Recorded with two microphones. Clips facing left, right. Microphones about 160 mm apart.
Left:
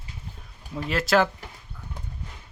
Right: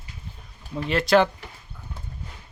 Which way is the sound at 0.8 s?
Centre (ahead or behind).